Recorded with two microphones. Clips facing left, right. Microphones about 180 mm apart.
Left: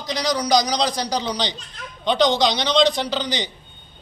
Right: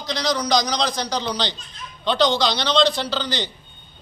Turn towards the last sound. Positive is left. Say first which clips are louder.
# left 1 dB
turn(degrees=15)  # may be behind; listen again after turning